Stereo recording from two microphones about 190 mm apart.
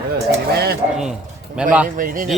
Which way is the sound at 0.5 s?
55° right (ahead or behind).